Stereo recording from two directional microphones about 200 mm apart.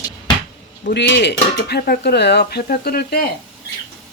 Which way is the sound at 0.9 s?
60° left (ahead or behind).